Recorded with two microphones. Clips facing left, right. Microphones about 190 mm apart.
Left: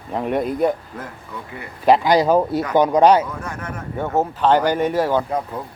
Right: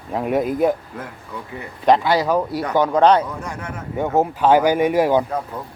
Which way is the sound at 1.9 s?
10° left (ahead or behind).